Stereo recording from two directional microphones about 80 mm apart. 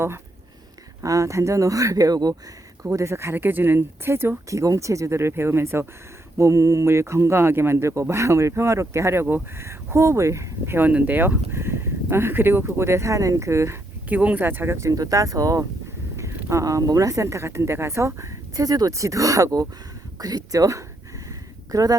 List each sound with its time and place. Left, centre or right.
1.0 s speech: right
2.8 s speech: right
10.8 s speech: right
14.1 s speech: centre; by 21.9 s right